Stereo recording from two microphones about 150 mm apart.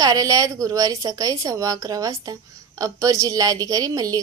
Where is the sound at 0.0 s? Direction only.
25° right (ahead or behind).